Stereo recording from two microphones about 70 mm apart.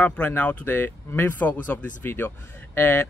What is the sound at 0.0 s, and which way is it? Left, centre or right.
Speech, left.